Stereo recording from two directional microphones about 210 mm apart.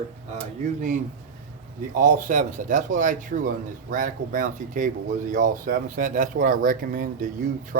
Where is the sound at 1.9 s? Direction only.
40° right (ahead or behind).